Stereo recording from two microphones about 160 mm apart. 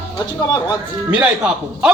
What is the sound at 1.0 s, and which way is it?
Speech, 5° right (ahead or behind).